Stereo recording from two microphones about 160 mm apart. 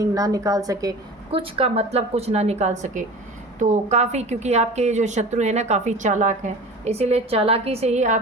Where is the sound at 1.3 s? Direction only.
35° right (ahead or behind).